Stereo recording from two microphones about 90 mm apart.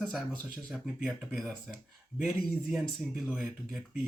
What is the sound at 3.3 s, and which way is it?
Speech, 5° right (ahead or behind).